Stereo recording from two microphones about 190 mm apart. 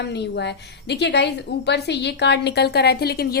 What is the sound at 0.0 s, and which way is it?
A woman's voice, 65° left (ahead or behind).